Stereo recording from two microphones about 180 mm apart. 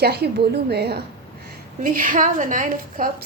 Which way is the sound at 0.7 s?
65° right (ahead or behind).